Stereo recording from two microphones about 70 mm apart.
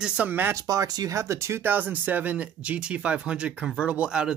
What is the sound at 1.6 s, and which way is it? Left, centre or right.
Speech, right.